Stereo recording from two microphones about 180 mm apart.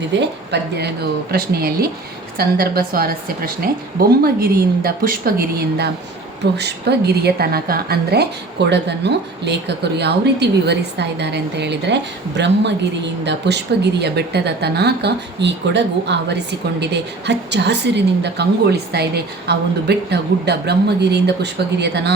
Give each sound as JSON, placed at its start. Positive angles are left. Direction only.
{"t": 0.1, "sound": "speech", "side_deg": -70}
{"t": 1.3, "sound": "a woman's voice", "side_deg": -60}